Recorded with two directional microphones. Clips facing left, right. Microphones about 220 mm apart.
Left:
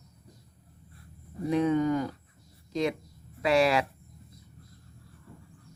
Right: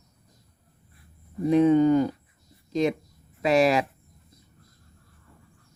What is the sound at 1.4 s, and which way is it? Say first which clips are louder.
Speech: right 7 dB; 25° right (ahead or behind).